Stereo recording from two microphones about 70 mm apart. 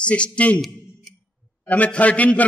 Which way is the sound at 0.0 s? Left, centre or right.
Centre.